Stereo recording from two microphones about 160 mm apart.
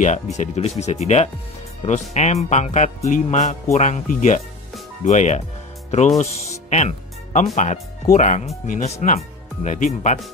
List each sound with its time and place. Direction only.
0.0 s speech: 50° left (ahead or behind)
6.7 s music: 45° left (ahead or behind)
7.5 s speech: 50° left (ahead or behind)